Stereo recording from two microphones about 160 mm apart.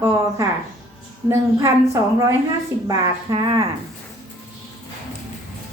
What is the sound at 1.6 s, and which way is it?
A woman's voice, 20° right (ahead or behind).